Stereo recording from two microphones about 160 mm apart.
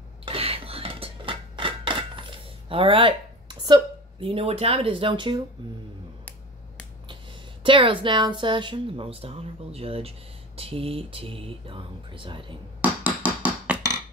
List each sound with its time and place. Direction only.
0.2 s a sound: 35° right (ahead or behind)
7.6 s a woman's voice: 30° right (ahead or behind)
13.0 s hammer: 10° right (ahead or behind)